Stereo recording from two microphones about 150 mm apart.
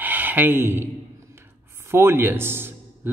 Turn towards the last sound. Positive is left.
turn(degrees=-15)  # may be behind; listen again after turning